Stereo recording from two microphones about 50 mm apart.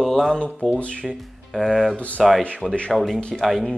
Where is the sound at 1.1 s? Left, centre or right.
Centre.